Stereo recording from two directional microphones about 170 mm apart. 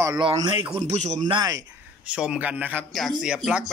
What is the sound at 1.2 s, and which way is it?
Speech, 25° right (ahead or behind).